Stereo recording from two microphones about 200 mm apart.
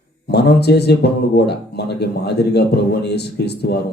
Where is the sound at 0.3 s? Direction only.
55° left (ahead or behind).